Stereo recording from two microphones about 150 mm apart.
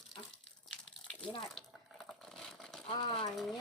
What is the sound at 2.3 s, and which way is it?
Vehicle, 5° left (ahead or behind).